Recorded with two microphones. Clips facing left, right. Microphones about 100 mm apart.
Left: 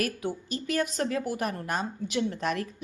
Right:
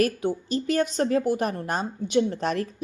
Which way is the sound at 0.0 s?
30° right (ahead or behind).